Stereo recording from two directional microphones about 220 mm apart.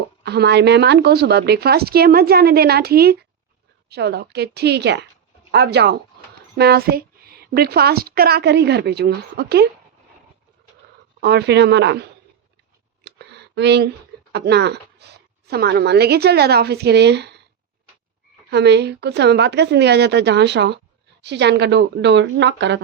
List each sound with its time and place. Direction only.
0.2 s a woman's voice: 50° right (ahead or behind)
11.2 s a woman's voice: 45° right (ahead or behind)
13.1 s a sound: 50° right (ahead or behind)
14.3 s a woman's voice: 50° right (ahead or behind)
18.5 s a woman's voice: 50° right (ahead or behind)